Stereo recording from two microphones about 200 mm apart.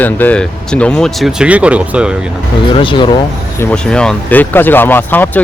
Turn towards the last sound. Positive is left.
turn(degrees=10)  # may be behind; listen again after turning